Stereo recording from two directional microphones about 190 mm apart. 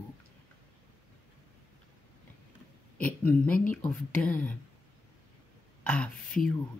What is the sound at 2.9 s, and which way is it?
Speech, 10° left (ahead or behind).